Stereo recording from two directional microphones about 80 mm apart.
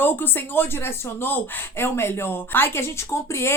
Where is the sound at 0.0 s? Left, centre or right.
Left.